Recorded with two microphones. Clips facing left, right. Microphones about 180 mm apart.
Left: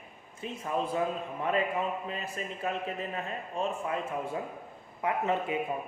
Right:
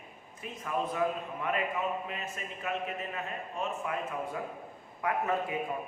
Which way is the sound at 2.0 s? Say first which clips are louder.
Left 3 dB; 35° left (ahead or behind).